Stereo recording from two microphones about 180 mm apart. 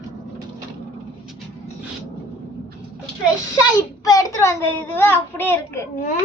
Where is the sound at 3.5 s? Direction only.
20° left (ahead or behind).